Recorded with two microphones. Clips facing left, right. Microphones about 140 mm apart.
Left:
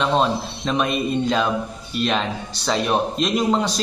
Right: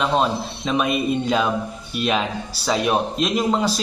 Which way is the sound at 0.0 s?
Centre (ahead or behind).